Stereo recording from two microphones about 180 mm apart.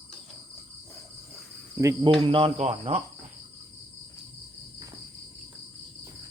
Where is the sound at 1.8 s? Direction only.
15° right (ahead or behind).